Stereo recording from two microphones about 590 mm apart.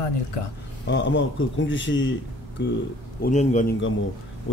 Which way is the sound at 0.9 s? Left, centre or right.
Centre.